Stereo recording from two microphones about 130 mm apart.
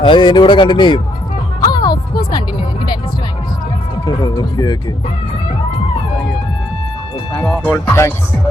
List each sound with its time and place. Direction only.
0.0 s speech: 35° left (ahead or behind)
1.7 s music: 30° left (ahead or behind)
4.0 s speech: 30° left (ahead or behind)
7.3 s speech: 10° left (ahead or behind)